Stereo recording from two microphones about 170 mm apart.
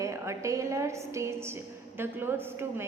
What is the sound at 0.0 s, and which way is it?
A woman's voice, 15° right (ahead or behind).